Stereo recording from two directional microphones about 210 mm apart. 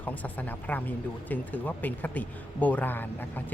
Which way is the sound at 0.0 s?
5° left (ahead or behind).